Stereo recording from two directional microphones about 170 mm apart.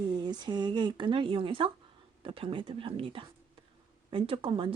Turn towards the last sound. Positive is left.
turn(degrees=-30)  # may be behind; listen again after turning